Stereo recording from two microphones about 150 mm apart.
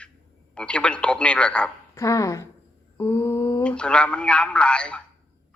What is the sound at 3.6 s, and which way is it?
A man's voice, 5° left (ahead or behind).